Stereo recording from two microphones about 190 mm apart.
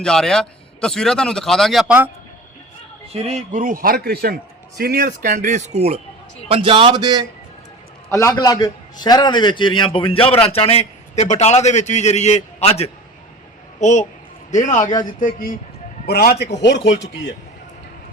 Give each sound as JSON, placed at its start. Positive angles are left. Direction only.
{"t": 0.0, "sound": "a man's voice", "side_deg": 5}
{"t": 3.1, "sound": "a man's voice", "side_deg": -35}
{"t": 8.1, "sound": "a man's voice", "side_deg": 20}